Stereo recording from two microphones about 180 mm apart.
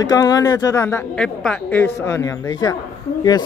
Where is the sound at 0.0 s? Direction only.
20° left (ahead or behind).